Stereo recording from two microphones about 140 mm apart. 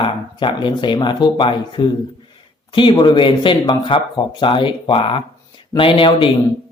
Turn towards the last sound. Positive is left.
turn(degrees=40)  # may be behind; listen again after turning